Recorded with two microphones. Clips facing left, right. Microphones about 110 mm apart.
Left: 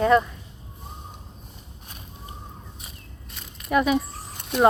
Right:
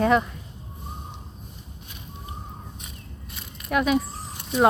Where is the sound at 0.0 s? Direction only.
Centre (ahead or behind).